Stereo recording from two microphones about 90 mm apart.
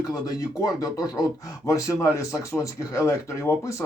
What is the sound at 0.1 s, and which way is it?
Speech, 40° left (ahead or behind).